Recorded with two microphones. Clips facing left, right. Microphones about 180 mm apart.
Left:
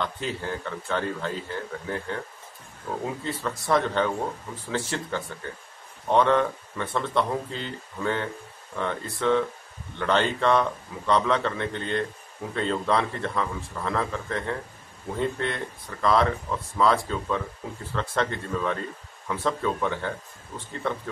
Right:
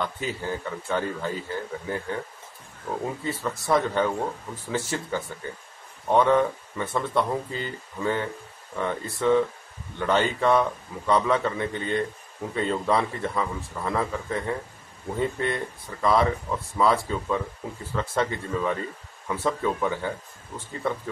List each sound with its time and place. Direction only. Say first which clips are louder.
0.0 s speech: even; 5° right (ahead or behind)